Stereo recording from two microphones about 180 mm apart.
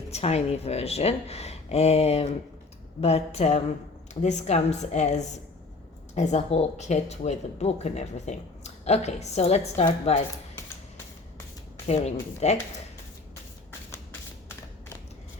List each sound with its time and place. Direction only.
0.1 s speech: 35° left (ahead or behind)
11.9 s speech: 40° left (ahead or behind)
13.9 s shuffling cards: 15° left (ahead or behind)